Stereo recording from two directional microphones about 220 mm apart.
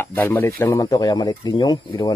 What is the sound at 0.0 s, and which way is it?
Speech, 10° left (ahead or behind).